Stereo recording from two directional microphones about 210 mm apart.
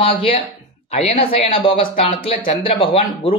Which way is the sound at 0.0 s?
25° left (ahead or behind).